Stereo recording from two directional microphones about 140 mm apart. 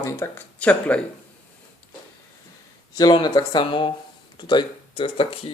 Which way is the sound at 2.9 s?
30° left (ahead or behind).